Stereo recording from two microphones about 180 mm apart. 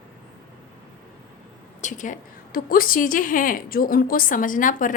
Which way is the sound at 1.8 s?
45° left (ahead or behind).